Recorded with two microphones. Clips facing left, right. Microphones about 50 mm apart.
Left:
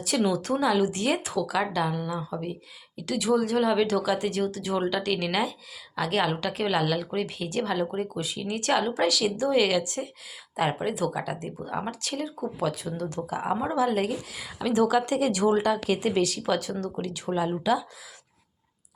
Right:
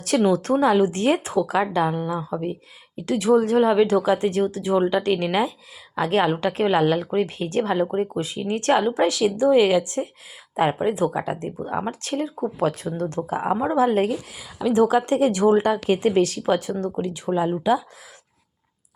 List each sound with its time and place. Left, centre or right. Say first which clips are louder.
0.0 s speech: right 6 dB; right
2.4 s speech: right 6 dB; right
9.2 s speech: right 9 dB; right
13.4 s speech: right 5 dB; right
14.3 s speech: right 5 dB; centre
14.7 s speech: right 5 dB; right